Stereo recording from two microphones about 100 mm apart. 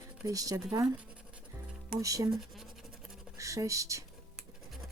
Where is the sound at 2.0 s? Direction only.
35° right (ahead or behind).